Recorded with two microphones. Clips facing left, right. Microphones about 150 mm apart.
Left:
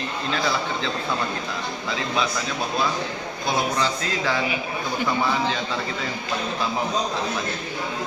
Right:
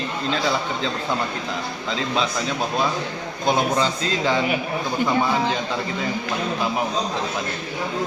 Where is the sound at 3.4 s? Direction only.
20° right (ahead or behind).